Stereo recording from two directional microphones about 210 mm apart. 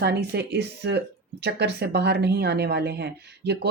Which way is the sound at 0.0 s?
50° right (ahead or behind).